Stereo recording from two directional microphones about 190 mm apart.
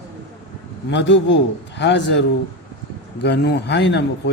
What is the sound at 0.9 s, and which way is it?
A man's voice, 70° left (ahead or behind).